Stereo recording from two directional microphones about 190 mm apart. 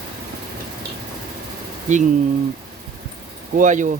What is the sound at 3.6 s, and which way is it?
Speech, 40° right (ahead or behind).